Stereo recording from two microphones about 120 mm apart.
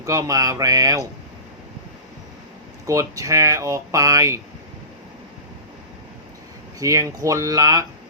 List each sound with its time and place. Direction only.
0.0 s speech: 25° right (ahead or behind)
2.8 s speech: 25° right (ahead or behind)
6.7 s speech: 25° right (ahead or behind)